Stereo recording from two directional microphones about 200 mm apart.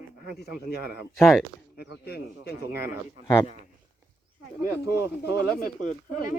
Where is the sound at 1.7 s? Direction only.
55° left (ahead or behind).